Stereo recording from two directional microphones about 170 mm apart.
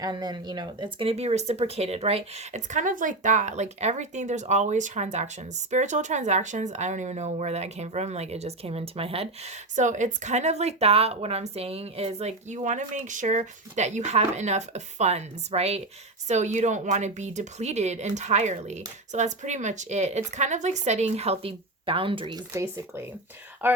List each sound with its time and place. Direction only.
0.0 s speech: 25° right (ahead or behind)
9.7 s speech: 45° right (ahead or behind); by 22.4 s 30° right (ahead or behind)
22.5 s speech: 15° right (ahead or behind)